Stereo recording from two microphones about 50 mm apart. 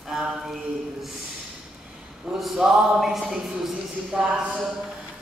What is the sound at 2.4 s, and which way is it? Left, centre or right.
A woman's voice, centre.